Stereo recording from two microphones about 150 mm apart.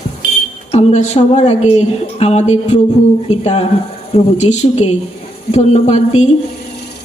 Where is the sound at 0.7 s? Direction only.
45° left (ahead or behind).